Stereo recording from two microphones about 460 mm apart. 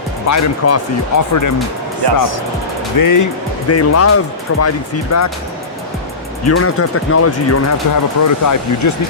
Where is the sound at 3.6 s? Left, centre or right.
Left.